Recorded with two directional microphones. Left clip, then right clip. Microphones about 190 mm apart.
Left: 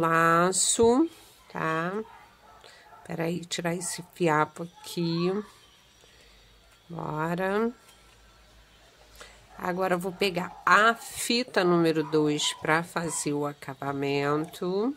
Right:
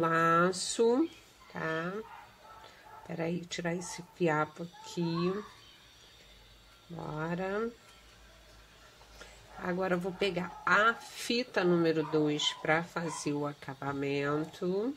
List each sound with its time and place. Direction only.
0.0 s speech: 20° left (ahead or behind)
3.1 s speech: 25° left (ahead or behind)
7.0 s speech: 25° left (ahead or behind)
9.2 s speech: 25° left (ahead or behind)